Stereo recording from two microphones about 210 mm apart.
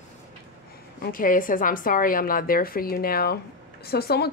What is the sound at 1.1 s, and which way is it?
Speech, 40° left (ahead or behind).